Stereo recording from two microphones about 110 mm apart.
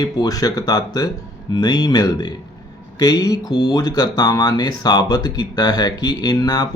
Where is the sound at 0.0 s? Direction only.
35° left (ahead or behind).